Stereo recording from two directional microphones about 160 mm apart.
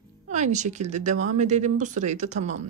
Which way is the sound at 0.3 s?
50° right (ahead or behind).